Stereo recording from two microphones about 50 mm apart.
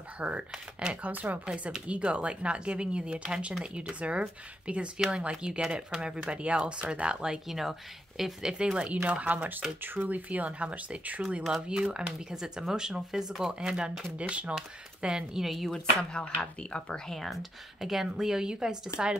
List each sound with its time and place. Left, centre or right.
0.2 s speech: right
1.0 s speech: right
7.4 s speech: centre; by 9.7 s right
9.8 s speech: right
11.7 s speech: centre
14.5 s speech: centre
15.7 s speech: centre
17.2 s speech: centre